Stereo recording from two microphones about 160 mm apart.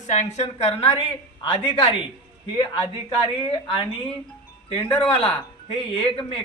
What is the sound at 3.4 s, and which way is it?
Speech, 35° left (ahead or behind).